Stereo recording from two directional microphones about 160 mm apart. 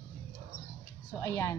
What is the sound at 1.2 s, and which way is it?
Speech, 20° left (ahead or behind).